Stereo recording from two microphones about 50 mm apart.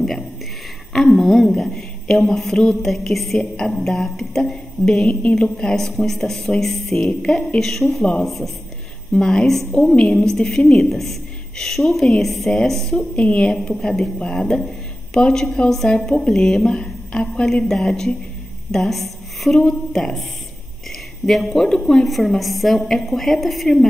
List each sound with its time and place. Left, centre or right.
0.9 s a woman's voice: centre
4.8 s a woman's voice: left
7.6 s a woman's voice: centre
8.0 s a woman's voice: centre
9.5 s a woman's voice: centre
9.8 s speech: centre
10.2 s a woman's voice: centre
10.9 s a woman's voice: centre
13.1 s a woman's voice: left
15.7 s a woman's voice: centre
21.3 s a woman's voice: centre